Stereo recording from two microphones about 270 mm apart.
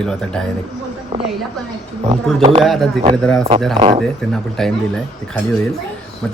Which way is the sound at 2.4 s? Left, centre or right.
Centre.